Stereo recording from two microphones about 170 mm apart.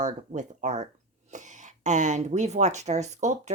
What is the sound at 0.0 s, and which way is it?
Speech, 45° right (ahead or behind).